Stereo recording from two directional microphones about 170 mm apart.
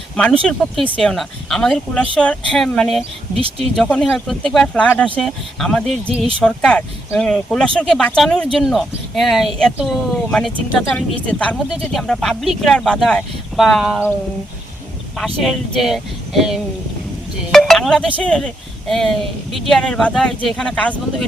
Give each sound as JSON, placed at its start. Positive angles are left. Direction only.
{"t": 0.6, "sound": "speech", "side_deg": 5}
{"t": 6.1, "sound": "speech", "side_deg": -35}
{"t": 6.4, "sound": "speech", "side_deg": 5}
{"t": 15.2, "sound": "speech", "side_deg": 0}